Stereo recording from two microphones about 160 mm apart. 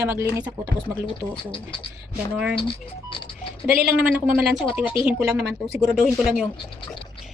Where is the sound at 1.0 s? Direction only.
30° left (ahead or behind).